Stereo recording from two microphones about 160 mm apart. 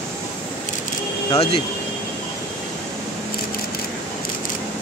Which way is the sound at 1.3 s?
35° left (ahead or behind).